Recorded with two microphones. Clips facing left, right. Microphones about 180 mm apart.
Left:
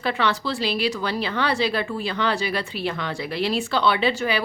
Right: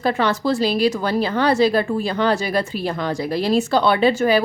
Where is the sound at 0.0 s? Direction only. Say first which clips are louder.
Right 5 dB; 45° right (ahead or behind).